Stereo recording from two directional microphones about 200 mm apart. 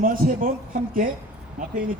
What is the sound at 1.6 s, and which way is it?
Speech, 40° right (ahead or behind).